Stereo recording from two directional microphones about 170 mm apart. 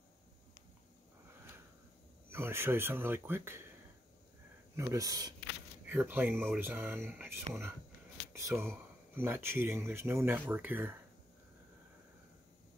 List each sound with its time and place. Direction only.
2.2 s speech: 15° right (ahead or behind)
4.7 s speech: 20° right (ahead or behind)
5.9 s speech: 10° right (ahead or behind)